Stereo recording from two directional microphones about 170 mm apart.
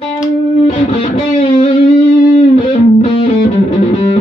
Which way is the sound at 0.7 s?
45° left (ahead or behind).